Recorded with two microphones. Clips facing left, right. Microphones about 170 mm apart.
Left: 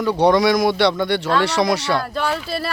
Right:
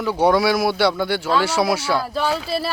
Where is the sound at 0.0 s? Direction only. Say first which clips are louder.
Left 2 dB; 5° right (ahead or behind).